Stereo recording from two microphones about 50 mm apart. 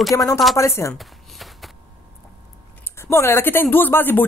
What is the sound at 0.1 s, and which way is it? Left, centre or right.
Speech, left.